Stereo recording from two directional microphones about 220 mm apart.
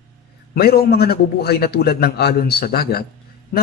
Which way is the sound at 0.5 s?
45° left (ahead or behind).